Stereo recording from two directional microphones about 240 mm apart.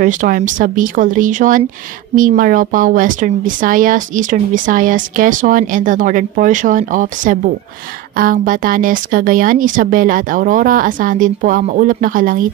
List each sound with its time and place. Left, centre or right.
0.0 s a woman's voice: right